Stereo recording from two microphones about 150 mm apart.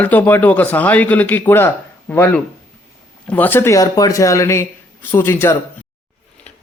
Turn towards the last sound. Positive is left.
turn(degrees=15)  # may be behind; listen again after turning